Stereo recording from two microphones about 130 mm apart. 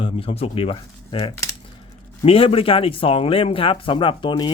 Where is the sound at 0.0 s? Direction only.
45° left (ahead or behind).